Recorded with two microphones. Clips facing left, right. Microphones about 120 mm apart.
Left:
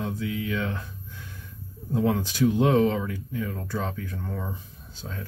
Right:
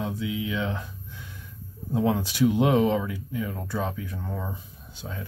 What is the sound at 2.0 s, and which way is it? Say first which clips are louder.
Speech: even; 20° right (ahead or behind).